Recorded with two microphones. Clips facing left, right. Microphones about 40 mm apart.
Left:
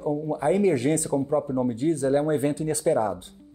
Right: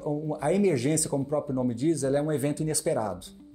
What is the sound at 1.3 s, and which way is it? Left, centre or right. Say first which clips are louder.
Speech: left 2 dB; left.